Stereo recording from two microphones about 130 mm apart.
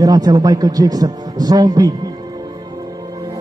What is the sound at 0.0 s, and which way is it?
A man's voice, 30° right (ahead or behind).